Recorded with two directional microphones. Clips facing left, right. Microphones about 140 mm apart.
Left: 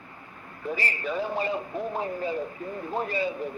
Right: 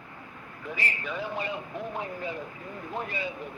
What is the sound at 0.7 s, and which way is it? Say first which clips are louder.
Speech: left 4 dB; 35° left (ahead or behind).